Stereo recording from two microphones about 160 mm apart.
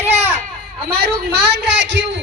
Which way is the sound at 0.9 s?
80° right.